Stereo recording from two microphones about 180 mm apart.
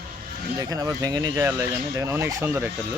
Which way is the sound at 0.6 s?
20° right (ahead or behind).